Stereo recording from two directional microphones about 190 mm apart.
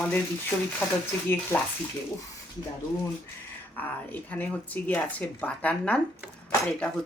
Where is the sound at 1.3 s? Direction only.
10° left (ahead or behind).